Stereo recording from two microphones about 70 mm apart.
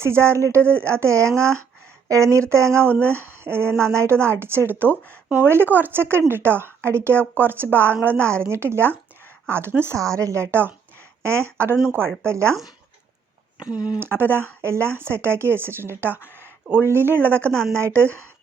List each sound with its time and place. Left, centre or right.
0.0 s speech: right
0.6 s speech: centre
0.9 s speech: right
2.7 s speech: right
10.2 s speech: right
13.6 s speech: centre
14.0 s speech: right